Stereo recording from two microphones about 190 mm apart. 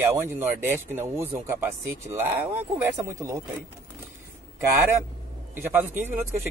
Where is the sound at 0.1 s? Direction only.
10° right (ahead or behind).